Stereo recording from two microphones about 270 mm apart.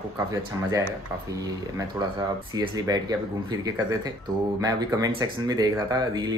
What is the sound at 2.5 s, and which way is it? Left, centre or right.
Speech, centre.